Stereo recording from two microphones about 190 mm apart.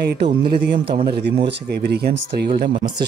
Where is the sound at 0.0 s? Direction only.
55° right (ahead or behind).